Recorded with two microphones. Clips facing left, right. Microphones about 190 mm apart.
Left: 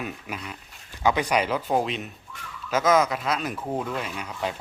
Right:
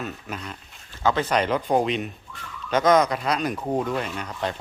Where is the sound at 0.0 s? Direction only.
10° left (ahead or behind).